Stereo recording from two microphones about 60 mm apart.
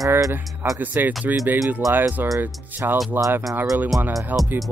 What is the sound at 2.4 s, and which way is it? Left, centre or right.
Speech, right.